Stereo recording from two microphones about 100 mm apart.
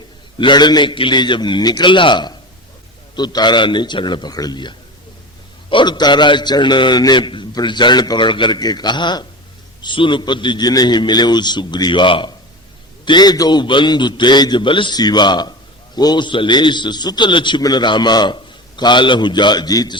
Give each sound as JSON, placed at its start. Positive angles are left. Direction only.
{"t": 0.3, "sound": "a man's voice", "side_deg": 50}
{"t": 13.1, "sound": "a man's voice", "side_deg": 45}